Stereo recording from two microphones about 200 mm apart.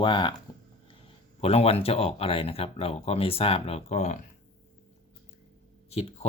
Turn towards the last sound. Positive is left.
turn(degrees=30)  # may be behind; listen again after turning